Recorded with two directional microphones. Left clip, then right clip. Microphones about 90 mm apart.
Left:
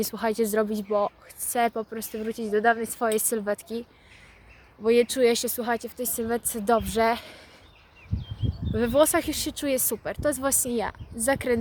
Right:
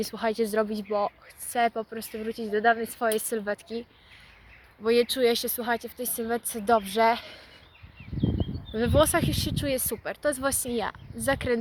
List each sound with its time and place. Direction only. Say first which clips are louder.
0.0 s speech: left 1 dB; 40° left (ahead or behind)
1.5 s speech: left 1 dB; 45° left (ahead or behind)
4.9 s speech: left 2 dB; 50° left (ahead or behind)
8.7 s speech: left 2 dB; 40° left (ahead or behind)